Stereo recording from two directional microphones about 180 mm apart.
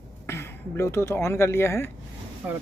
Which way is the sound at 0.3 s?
15° left (ahead or behind).